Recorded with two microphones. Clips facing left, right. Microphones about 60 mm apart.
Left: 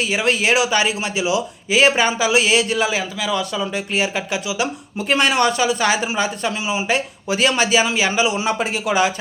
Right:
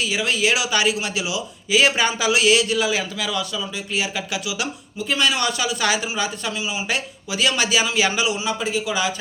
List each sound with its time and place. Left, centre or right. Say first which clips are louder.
0.0 s speech: left 3 dB; left
3.0 s a man's voice: left 3 dB; centre
3.3 s speech: left 5 dB; left
4.9 s speech: left 4 dB; left
8.4 s speech: left 3 dB; left